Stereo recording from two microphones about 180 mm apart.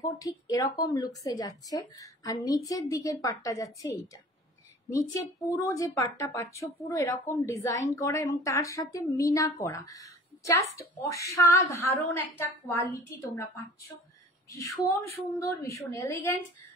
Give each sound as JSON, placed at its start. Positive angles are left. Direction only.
{"t": 0.0, "sound": "a woman's voice", "side_deg": 20}
{"t": 15.3, "sound": "a woman's voice", "side_deg": 15}